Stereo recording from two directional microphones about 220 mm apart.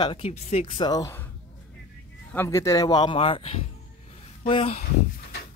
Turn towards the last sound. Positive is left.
turn(degrees=25)  # may be behind; listen again after turning